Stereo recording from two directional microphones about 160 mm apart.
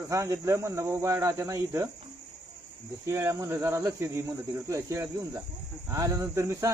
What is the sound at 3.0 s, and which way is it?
Speech, 15° right (ahead or behind).